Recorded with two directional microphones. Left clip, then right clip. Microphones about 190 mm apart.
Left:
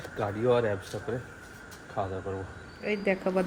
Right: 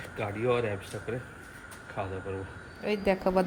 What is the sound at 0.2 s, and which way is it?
Speech, 20° left (ahead or behind).